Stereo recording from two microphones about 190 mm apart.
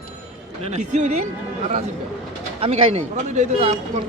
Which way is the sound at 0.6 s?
35° right (ahead or behind).